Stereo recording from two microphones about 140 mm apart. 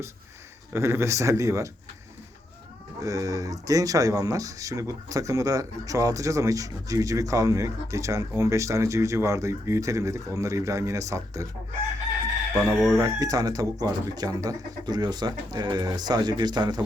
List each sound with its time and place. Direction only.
0.7 s speech: 15° right (ahead or behind)
3.0 s speech: 25° right (ahead or behind)
12.5 s chicken: centre (ahead or behind)
13.0 s speech: 25° right (ahead or behind)